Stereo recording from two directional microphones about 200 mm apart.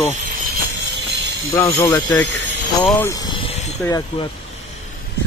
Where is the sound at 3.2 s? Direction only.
25° left (ahead or behind).